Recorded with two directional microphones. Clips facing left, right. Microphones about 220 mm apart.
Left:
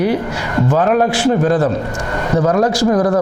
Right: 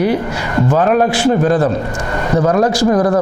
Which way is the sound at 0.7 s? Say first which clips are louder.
Right 1 dB; 25° right (ahead or behind).